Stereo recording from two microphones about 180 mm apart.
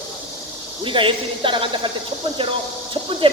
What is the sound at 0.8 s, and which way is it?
Speech, 30° right (ahead or behind).